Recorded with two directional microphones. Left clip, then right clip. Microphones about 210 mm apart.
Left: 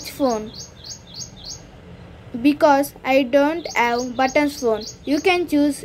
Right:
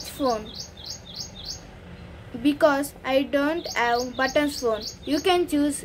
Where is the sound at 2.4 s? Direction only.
20° left (ahead or behind).